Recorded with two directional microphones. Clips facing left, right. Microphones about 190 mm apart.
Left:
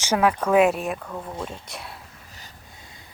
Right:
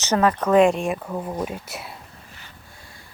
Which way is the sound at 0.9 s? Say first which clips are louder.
Right 5 dB; 20° right (ahead or behind).